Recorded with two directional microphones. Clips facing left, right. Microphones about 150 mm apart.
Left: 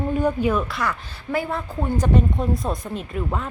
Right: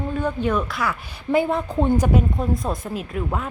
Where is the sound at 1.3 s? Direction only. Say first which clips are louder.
Right 5 dB; 20° right (ahead or behind).